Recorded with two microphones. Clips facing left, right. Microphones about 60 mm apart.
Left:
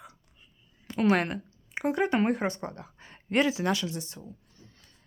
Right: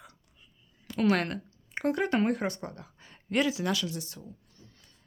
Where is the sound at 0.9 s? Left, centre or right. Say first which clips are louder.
Left 2 dB; left.